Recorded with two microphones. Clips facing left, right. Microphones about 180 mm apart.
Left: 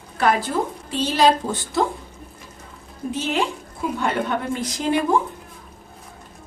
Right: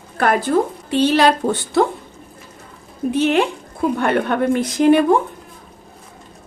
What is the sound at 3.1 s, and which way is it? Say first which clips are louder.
A woman's voice: right 7 dB; 65° right (ahead or behind).